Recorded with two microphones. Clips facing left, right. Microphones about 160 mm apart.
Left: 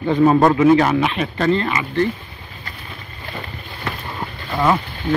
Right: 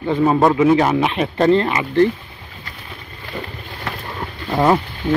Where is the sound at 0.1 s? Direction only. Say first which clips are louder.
Left 1 dB; 5° right (ahead or behind).